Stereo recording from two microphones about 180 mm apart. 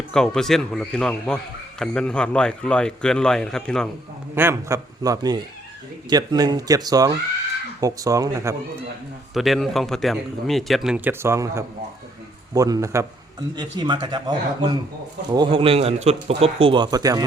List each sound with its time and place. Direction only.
0.1 s a man's voice: 5° left (ahead or behind)
4.4 s speech: 15° right (ahead or behind)
9.3 s a man's voice: centre (ahead or behind); by 17.2 s 20° right (ahead or behind)